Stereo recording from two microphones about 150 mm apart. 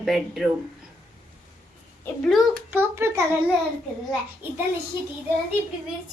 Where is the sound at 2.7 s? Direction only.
15° right (ahead or behind).